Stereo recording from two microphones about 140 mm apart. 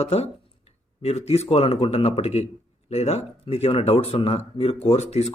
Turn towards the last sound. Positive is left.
turn(degrees=50)  # may be behind; listen again after turning